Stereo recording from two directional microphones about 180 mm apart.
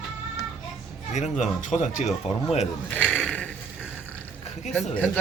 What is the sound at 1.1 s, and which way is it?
Speech, 40° left (ahead or behind).